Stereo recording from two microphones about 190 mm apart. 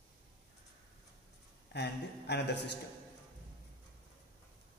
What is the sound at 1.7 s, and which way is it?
Speech, 60° left (ahead or behind).